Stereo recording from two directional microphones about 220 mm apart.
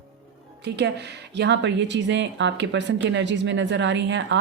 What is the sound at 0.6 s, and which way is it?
Speech, 50° right (ahead or behind).